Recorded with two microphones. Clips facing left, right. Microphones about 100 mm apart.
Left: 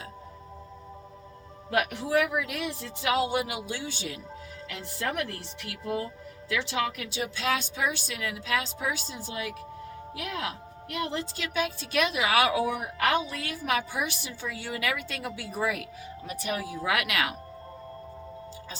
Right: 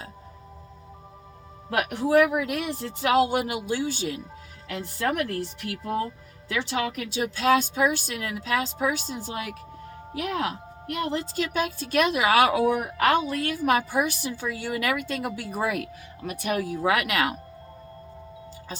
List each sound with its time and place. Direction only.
1.9 s speech: 45° right (ahead or behind)